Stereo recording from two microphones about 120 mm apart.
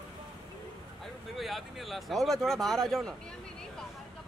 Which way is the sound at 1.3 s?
Centre (ahead or behind).